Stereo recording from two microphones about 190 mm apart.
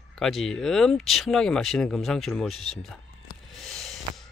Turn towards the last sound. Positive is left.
turn(degrees=0)  # may be behind; listen again after turning